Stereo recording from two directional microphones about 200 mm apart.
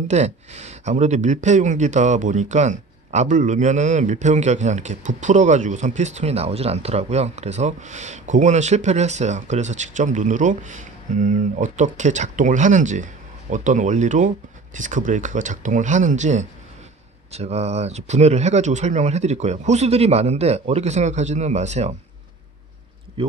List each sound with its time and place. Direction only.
0.1 s speech: 35° right (ahead or behind)
23.2 s speech: 25° right (ahead or behind)